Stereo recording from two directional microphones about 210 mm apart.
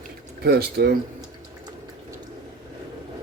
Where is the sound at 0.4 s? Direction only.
50° right (ahead or behind).